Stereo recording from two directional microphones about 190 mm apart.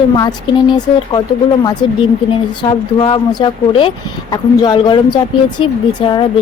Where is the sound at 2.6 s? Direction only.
25° left (ahead or behind).